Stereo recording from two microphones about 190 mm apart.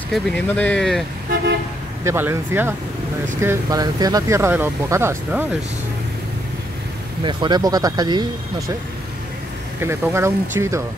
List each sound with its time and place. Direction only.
0.1 s speech: 5° left (ahead or behind)
2.0 s speech: 10° right (ahead or behind)
7.2 s speech: 25° right (ahead or behind)
9.8 s speech: 15° right (ahead or behind)